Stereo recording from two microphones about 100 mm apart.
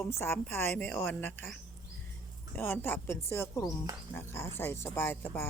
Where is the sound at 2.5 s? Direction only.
25° left (ahead or behind).